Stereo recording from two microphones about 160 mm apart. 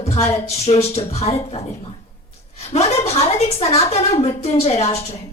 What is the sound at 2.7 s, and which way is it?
Speech, 40° left (ahead or behind).